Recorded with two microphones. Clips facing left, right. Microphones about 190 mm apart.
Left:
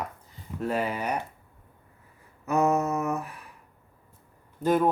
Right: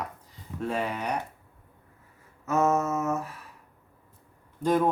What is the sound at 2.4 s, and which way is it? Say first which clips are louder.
Speech: left 1 dB; 15° left (ahead or behind).